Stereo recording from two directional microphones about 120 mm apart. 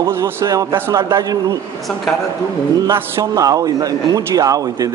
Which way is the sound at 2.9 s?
25° right (ahead or behind).